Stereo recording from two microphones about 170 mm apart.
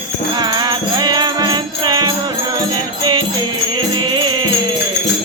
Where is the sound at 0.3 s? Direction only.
25° right (ahead or behind).